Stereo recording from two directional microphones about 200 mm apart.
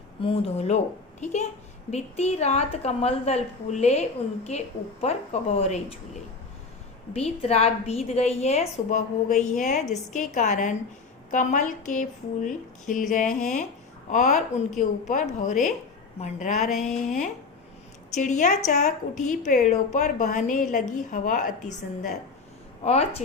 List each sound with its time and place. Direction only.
0.2 s a woman's voice: 25° left (ahead or behind)
7.1 s a woman's voice: 30° left (ahead or behind)
14.1 s a woman's voice: 35° left (ahead or behind)
16.6 s a sound: centre (ahead or behind)
18.1 s a woman's voice: 35° left (ahead or behind)